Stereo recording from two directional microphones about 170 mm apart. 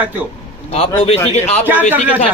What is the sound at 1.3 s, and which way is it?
Speech, 40° left (ahead or behind).